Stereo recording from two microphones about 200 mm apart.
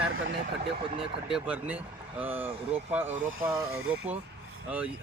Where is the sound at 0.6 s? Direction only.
30° right (ahead or behind).